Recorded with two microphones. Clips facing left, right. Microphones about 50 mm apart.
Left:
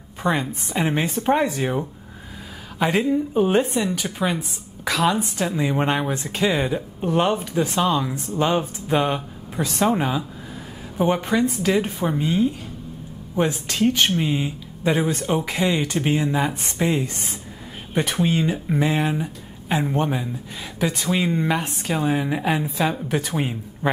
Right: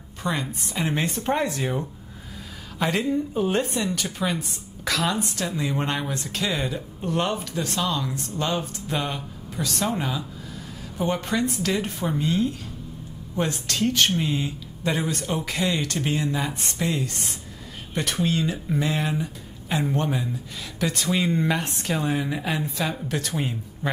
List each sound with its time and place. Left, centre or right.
0.2 s a woman's voice: left